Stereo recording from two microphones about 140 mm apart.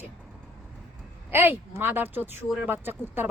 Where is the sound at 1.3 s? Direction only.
15° right (ahead or behind).